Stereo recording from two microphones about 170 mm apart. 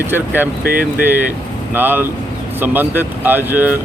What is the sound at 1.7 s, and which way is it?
Speech, 10° right (ahead or behind).